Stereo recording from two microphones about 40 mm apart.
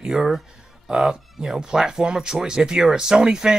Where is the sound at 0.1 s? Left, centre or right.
Centre.